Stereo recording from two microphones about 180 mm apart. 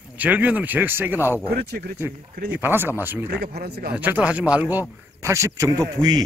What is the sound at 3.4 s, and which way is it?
Speech, 65° right (ahead or behind).